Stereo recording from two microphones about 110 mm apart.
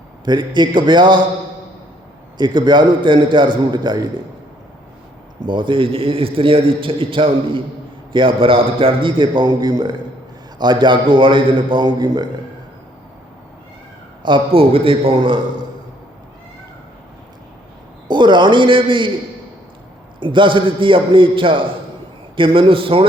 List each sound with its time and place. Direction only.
0.3 s a man's voice: 45° right (ahead or behind)
2.4 s a man's voice: 45° right (ahead or behind)
5.4 s a man's voice: 45° right (ahead or behind)
14.2 s a man's voice: 45° right (ahead or behind)
18.1 s a man's voice: 45° right (ahead or behind)
20.1 s a man's voice: 50° right (ahead or behind)